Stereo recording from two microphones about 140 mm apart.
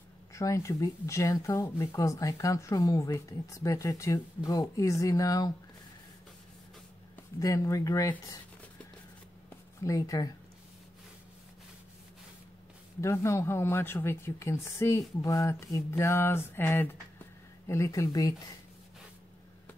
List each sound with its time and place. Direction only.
0.3 s speech: 20° left (ahead or behind)
7.3 s speech: 20° left (ahead or behind)
9.8 s speech: 20° left (ahead or behind)
13.0 s speech: 20° left (ahead or behind)